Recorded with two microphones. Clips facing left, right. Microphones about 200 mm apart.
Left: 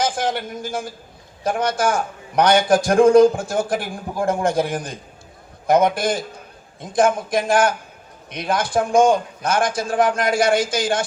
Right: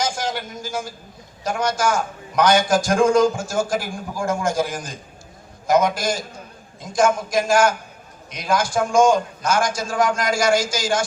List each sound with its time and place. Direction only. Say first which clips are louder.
0.0 s a man's voice: left 3 dB; 55° left (ahead or behind)